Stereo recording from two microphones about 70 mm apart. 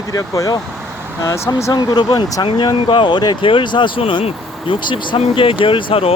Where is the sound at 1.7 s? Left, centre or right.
Left.